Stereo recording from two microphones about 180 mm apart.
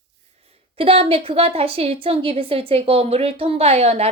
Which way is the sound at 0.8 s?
30° right (ahead or behind).